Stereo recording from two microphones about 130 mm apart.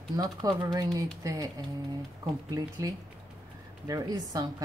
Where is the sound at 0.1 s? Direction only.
30° right (ahead or behind).